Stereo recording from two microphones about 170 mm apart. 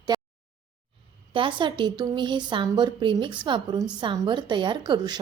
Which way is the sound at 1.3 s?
30° right (ahead or behind).